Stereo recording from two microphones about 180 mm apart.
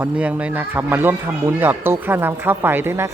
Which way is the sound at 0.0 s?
10° right (ahead or behind).